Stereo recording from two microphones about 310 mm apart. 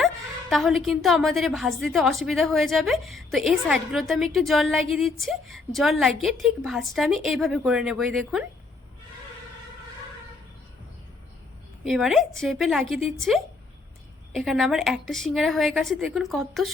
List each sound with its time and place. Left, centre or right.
0.5 s a woman's voice: centre
11.9 s a woman's voice: centre